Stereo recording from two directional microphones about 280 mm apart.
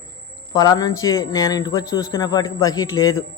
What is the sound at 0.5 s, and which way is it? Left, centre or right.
Speech, centre.